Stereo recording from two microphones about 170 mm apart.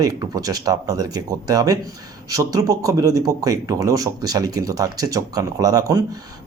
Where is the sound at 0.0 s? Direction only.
20° right (ahead or behind).